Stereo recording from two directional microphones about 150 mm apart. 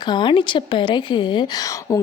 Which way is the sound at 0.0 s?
30° left (ahead or behind).